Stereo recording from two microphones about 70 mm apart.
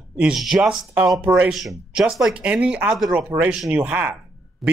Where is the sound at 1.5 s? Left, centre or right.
Centre.